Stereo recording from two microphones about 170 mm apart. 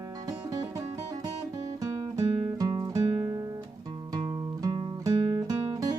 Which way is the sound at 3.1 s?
25° right (ahead or behind).